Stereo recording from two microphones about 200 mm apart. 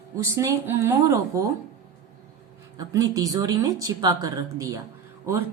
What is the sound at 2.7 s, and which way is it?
A woman's voice, 15° right (ahead or behind).